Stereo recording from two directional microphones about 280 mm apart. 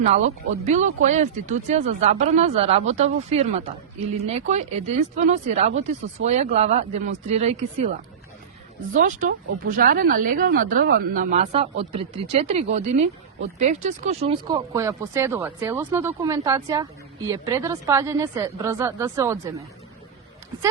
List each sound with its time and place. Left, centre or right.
0.1 s speech: right
9.0 s speech: right; by 19.6 s centre